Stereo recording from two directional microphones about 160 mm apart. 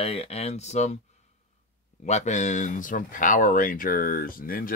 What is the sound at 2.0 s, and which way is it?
Speech, 45° left (ahead or behind).